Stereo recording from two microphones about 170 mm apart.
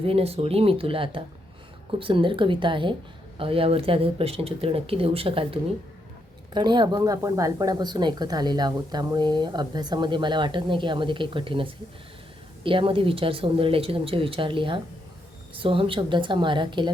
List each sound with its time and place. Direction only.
0.0 s speech: 35° right (ahead or behind)